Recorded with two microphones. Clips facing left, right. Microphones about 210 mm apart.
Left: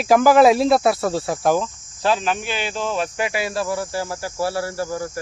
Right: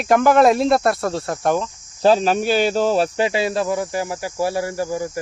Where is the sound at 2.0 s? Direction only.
35° right (ahead or behind).